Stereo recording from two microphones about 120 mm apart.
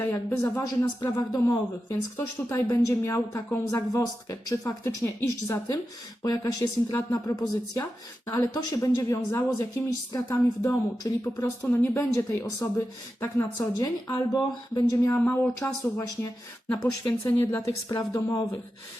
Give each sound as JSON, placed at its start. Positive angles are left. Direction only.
{"t": 0.0, "sound": "a woman's voice", "side_deg": 20}
{"t": 13.6, "sound": "a woman's voice", "side_deg": 30}
{"t": 15.1, "sound": "a woman's voice", "side_deg": 15}
{"t": 16.8, "sound": "a woman's voice", "side_deg": 35}
{"t": 17.4, "sound": "a woman's voice", "side_deg": 20}